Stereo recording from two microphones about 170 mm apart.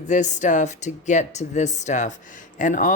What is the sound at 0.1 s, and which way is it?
Speech, 45° left (ahead or behind).